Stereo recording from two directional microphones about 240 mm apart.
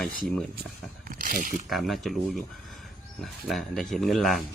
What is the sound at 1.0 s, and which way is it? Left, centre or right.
Speech, right.